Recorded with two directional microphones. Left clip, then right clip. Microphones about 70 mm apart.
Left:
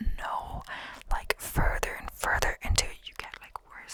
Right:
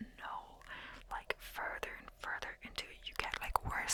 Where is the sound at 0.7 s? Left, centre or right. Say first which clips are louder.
Left 6 dB; left.